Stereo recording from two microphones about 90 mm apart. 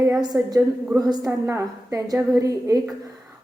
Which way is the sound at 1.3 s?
35° right (ahead or behind).